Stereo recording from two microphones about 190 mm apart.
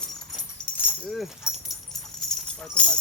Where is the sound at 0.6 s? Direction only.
5° left (ahead or behind).